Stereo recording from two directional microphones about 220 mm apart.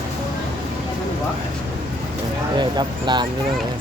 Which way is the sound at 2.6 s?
20° right (ahead or behind).